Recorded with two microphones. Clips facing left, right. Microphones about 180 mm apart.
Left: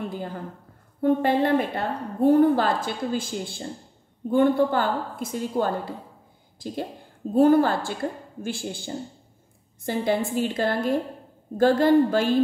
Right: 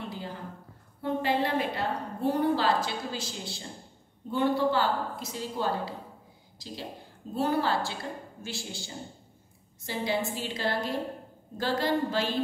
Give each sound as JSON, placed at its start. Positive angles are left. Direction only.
{"t": 1.0, "sound": "a woman's voice", "side_deg": 50}